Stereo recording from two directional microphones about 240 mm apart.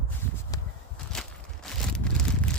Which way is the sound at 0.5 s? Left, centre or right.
Centre.